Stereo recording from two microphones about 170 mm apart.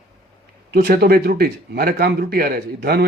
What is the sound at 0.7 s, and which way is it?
A man's voice, 65° right (ahead or behind).